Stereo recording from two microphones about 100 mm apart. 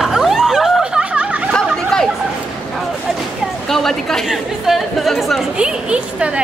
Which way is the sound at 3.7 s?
5° left (ahead or behind).